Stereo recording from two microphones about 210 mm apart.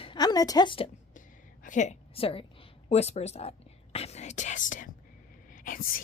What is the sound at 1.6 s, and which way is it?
A woman's voice, 35° left (ahead or behind).